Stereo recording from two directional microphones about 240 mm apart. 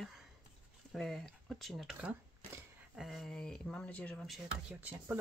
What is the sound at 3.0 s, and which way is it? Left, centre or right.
Speech, centre.